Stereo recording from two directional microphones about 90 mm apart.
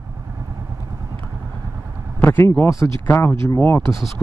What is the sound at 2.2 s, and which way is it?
Speech, 25° left (ahead or behind).